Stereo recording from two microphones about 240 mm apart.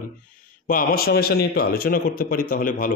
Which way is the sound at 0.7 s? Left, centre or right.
Left.